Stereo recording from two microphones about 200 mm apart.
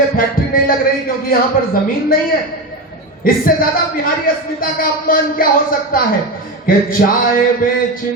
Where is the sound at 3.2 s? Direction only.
45° left (ahead or behind).